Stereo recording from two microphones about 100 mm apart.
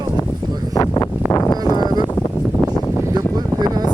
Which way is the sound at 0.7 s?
40° left (ahead or behind).